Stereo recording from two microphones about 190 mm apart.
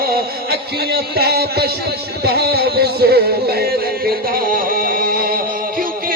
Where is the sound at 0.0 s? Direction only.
50° right (ahead or behind).